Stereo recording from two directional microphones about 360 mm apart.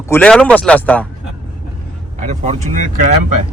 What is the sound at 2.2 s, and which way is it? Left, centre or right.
Speech, centre.